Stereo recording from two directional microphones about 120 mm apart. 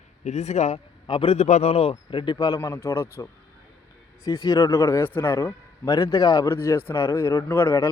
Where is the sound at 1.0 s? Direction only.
45° left (ahead or behind).